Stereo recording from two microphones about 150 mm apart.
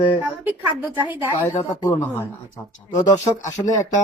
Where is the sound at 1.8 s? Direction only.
15° left (ahead or behind).